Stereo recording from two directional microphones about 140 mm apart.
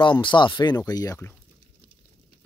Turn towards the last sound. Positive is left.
turn(degrees=25)  # may be behind; listen again after turning